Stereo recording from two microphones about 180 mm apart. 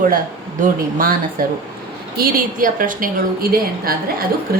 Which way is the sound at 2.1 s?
55° right (ahead or behind).